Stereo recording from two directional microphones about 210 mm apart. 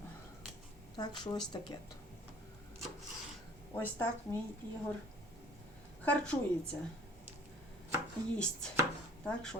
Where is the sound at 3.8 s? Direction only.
10° left (ahead or behind).